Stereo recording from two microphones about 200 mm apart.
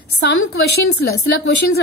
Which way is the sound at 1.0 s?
55° left (ahead or behind).